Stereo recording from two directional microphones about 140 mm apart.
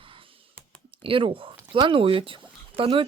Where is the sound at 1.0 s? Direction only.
40° right (ahead or behind).